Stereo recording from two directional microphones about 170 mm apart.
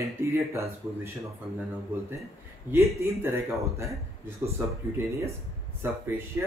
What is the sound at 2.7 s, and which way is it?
Speech, 15° right (ahead or behind).